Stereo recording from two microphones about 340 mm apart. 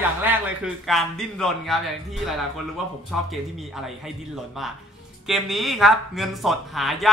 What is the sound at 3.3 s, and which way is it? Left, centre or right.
Speech, centre.